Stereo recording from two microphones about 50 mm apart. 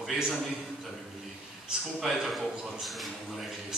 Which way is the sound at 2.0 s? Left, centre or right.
Centre.